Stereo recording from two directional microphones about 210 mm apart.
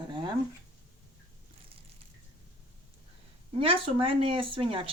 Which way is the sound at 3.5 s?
25° right (ahead or behind).